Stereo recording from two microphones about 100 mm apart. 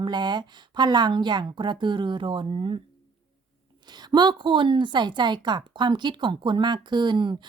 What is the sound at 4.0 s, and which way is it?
Speech, 45° right (ahead or behind).